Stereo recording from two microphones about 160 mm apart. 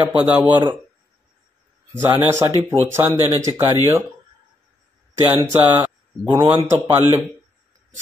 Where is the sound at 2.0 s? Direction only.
15° right (ahead or behind).